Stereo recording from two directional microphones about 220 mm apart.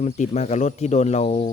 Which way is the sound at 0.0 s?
30° left (ahead or behind).